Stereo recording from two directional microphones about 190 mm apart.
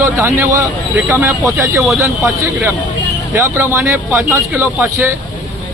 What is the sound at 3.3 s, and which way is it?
Speech, 15° right (ahead or behind).